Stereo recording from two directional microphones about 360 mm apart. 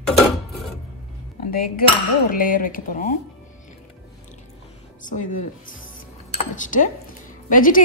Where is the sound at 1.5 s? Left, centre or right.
Left.